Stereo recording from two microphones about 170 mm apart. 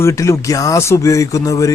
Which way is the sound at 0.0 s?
15° left (ahead or behind).